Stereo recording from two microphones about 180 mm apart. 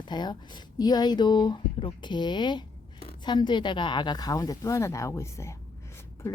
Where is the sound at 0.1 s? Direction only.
25° left (ahead or behind).